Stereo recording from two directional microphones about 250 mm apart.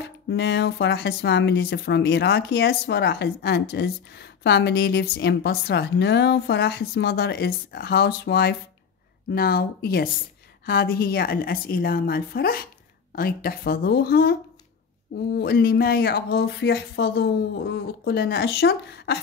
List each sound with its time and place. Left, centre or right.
0.0 s a woman's voice: left